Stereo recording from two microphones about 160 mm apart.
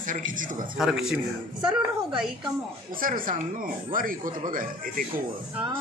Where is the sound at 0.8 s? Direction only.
5° right (ahead or behind).